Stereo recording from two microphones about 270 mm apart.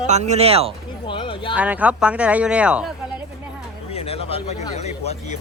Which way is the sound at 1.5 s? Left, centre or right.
Centre.